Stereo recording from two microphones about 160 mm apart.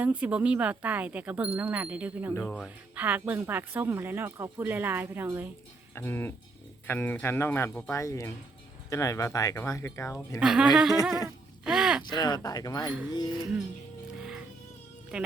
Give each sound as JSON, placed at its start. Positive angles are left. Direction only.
{"t": 0.0, "sound": "speech", "side_deg": -10}
{"t": 2.4, "sound": "speech", "side_deg": 5}
{"t": 2.6, "sound": "speech", "side_deg": -10}
{"t": 5.9, "sound": "speech", "side_deg": 15}
{"t": 10.4, "sound": "speech", "side_deg": -5}
{"t": 12.1, "sound": "speech", "side_deg": 25}
{"t": 15.1, "sound": "speech", "side_deg": -5}